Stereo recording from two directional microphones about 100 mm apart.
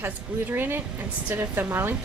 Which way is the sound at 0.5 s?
20° right (ahead or behind).